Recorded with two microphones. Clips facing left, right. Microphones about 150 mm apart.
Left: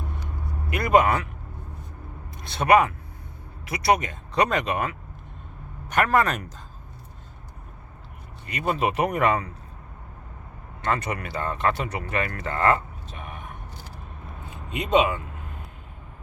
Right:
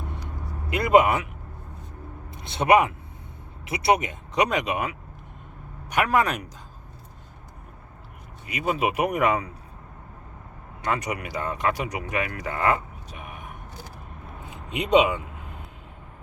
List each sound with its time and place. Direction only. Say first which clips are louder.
0.7 s speech: right 1 dB; 20° right (ahead or behind)
2.3 s speech: even; 20° right (ahead or behind)
8.4 s speech: even; 10° right (ahead or behind)
10.8 s speech: left 1 dB; 10° right (ahead or behind)
14.8 s speech: right 2 dB; 20° right (ahead or behind)